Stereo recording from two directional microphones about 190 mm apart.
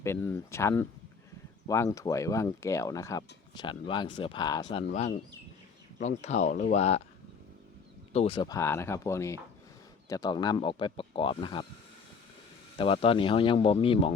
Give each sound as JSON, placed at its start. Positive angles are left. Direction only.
{"t": 0.0, "sound": "speech", "side_deg": 10}
{"t": 4.9, "sound": "speech", "side_deg": 35}
{"t": 8.1, "sound": "speech", "side_deg": 30}
{"t": 12.7, "sound": "speech", "side_deg": 30}